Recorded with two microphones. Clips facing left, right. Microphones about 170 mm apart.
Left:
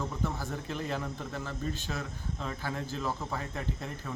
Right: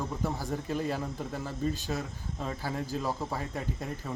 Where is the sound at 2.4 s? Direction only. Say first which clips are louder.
Right 3 dB; 10° right (ahead or behind).